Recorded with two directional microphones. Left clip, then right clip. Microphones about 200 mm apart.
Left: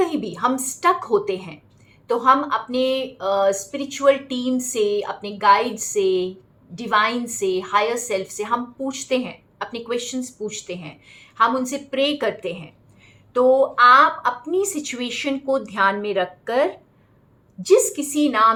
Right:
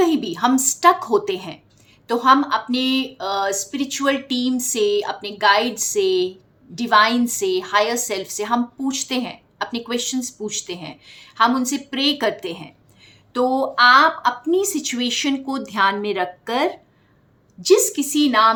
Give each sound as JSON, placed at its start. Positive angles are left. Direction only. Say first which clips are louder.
{"t": 0.0, "sound": "a woman's voice", "louder": "right 3 dB", "side_deg": -50}